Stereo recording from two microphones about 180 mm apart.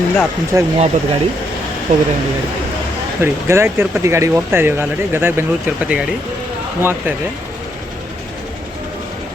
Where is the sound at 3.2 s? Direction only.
15° right (ahead or behind).